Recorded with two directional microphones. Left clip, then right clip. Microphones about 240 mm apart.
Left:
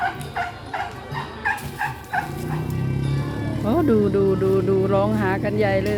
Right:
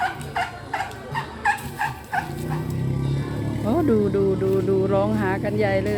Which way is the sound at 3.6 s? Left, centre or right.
Centre.